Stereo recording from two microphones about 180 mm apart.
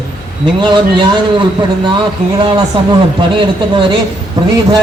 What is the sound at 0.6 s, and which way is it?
A man's voice, 25° right (ahead or behind).